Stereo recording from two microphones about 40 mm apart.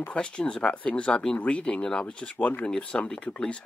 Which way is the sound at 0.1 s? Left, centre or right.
Left.